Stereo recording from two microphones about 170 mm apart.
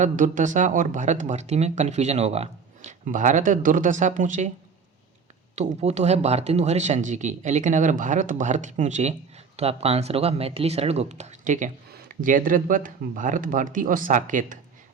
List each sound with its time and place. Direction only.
0.0 s speech: 50° right (ahead or behind)
5.5 s speech: 40° right (ahead or behind)